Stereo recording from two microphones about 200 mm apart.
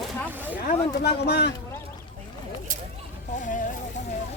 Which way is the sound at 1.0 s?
55° left (ahead or behind).